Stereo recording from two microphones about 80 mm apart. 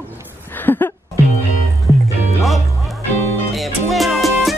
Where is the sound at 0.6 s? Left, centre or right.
Left.